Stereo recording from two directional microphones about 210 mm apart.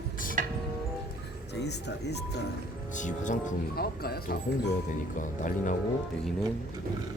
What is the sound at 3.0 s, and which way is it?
Speech, 35° left (ahead or behind).